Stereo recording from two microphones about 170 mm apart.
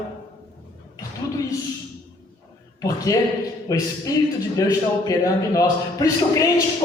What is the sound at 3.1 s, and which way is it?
A man's voice, 20° left (ahead or behind).